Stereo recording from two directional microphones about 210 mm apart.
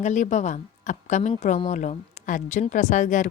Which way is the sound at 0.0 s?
35° left (ahead or behind).